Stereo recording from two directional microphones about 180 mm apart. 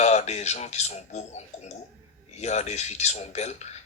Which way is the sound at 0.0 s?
40° left (ahead or behind).